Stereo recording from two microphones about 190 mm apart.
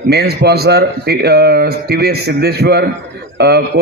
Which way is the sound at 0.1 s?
60° right (ahead or behind).